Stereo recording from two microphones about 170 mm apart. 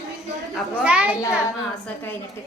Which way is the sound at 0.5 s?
5° right (ahead or behind).